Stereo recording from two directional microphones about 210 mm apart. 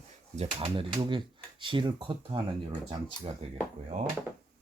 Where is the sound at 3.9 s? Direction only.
35° right (ahead or behind).